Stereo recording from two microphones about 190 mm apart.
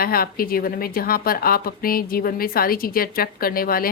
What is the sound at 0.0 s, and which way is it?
A woman's voice, 50° left (ahead or behind).